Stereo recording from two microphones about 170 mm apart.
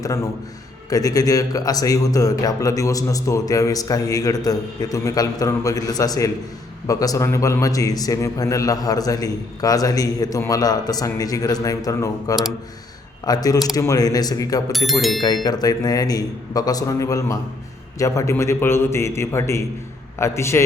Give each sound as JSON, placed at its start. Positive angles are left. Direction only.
{"t": 0.9, "sound": "a man's voice", "side_deg": 20}
{"t": 14.7, "sound": "speech", "side_deg": 0}
{"t": 15.4, "sound": "a man's voice", "side_deg": 20}